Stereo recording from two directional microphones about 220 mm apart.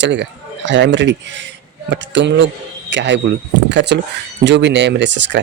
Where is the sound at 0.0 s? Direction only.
55° right (ahead or behind).